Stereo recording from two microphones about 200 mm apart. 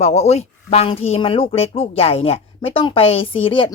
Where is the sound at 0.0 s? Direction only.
30° left (ahead or behind).